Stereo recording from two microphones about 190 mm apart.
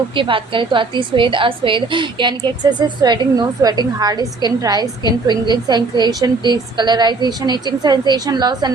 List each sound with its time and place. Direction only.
0.2 s a woman's voice: 25° right (ahead or behind)